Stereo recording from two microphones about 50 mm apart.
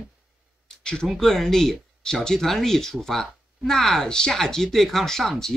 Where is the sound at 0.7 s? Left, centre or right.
Centre.